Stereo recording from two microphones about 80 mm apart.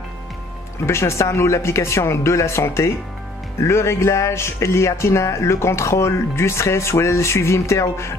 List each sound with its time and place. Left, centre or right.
0.8 s speech: left